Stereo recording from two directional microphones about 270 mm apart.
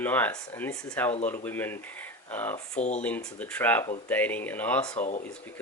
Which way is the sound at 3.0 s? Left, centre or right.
Centre.